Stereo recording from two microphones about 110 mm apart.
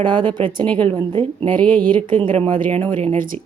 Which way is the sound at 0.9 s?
60° right (ahead or behind).